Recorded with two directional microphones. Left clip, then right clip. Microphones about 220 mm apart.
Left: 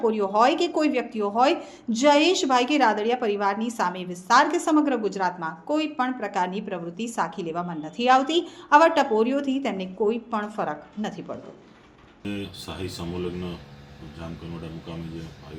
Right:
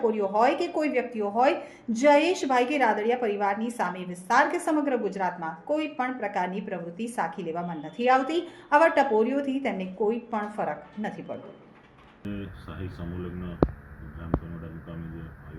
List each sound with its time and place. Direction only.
0.0 s speech: 20° left (ahead or behind)